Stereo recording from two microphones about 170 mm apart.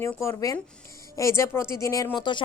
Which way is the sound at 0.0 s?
15° left (ahead or behind).